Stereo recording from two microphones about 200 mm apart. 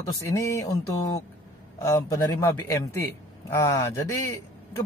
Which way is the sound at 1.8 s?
15° left (ahead or behind).